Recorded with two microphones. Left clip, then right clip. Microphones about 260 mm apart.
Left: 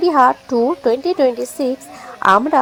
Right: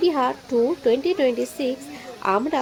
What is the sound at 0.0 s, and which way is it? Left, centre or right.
A woman's voice, centre.